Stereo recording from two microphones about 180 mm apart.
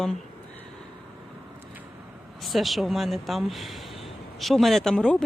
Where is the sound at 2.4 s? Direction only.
Centre (ahead or behind).